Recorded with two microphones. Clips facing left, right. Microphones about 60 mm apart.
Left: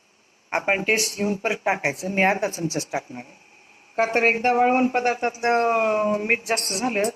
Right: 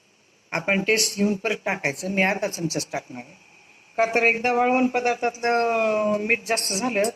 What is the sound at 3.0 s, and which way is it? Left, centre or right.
Speech, left.